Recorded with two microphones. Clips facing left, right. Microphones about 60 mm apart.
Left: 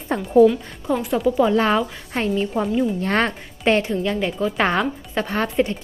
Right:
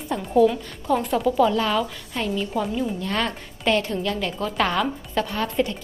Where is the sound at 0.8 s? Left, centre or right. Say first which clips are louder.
Left 1 dB; centre.